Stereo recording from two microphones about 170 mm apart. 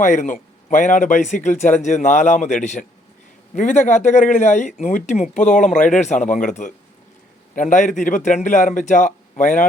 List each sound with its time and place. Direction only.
0.0 s speech: 45° left (ahead or behind)